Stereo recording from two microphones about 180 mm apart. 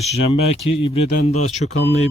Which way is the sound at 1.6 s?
75° left (ahead or behind).